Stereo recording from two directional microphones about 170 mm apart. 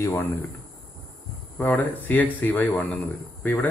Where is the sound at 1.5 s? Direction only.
10° left (ahead or behind).